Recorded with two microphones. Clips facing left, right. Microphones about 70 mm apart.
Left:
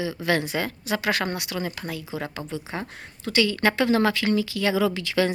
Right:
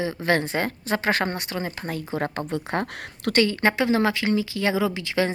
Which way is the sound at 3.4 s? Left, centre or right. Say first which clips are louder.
Right 1 dB; right.